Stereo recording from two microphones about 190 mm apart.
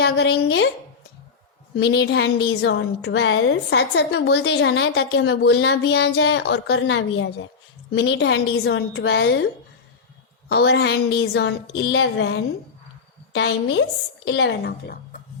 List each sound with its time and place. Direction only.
0.0 s a woman's voice: 70° left (ahead or behind)
1.7 s a woman's voice: 60° left (ahead or behind)
10.5 s a woman's voice: 60° left (ahead or behind)